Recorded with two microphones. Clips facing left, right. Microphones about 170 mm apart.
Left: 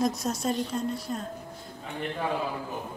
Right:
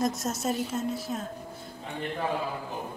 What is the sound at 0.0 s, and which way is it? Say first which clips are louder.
Speech: left 1 dB; centre (ahead or behind).